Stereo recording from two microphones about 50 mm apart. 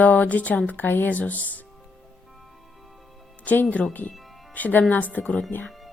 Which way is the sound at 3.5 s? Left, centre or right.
Left.